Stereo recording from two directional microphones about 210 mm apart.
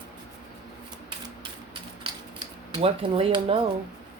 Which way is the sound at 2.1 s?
25° right (ahead or behind).